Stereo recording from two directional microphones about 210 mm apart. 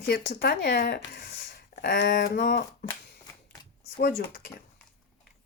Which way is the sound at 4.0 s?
45° left (ahead or behind).